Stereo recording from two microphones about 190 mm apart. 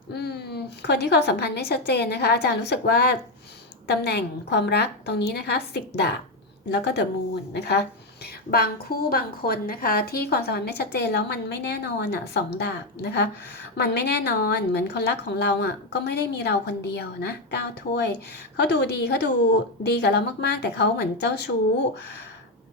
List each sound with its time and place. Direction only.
0.1 s a woman's voice: 60° left (ahead or behind)